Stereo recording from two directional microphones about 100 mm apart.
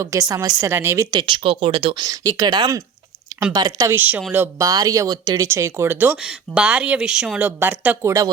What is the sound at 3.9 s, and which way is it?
Speech, 20° right (ahead or behind).